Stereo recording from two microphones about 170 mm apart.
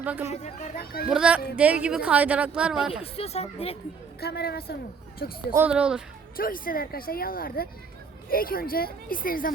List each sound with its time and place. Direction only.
0.0 s speech: 10° right (ahead or behind)
0.3 s speech: 40° left (ahead or behind)
1.0 s a woman's voice: 5° right (ahead or behind)
3.0 s speech: 35° left (ahead or behind)
4.2 s a child's voice: 65° left (ahead or behind)
5.5 s a woman's voice: 5° right (ahead or behind)
6.3 s speech: 55° left (ahead or behind)